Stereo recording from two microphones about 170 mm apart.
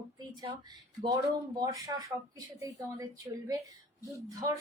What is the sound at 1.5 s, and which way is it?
A woman's voice, 25° right (ahead or behind).